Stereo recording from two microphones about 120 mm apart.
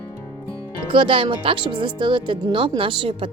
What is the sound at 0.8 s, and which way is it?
Speech, 45° right (ahead or behind).